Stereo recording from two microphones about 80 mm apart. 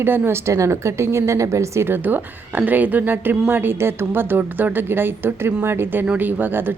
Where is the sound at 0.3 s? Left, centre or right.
Right.